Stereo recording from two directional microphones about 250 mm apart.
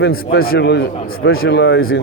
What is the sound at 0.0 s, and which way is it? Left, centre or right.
A man's voice, left.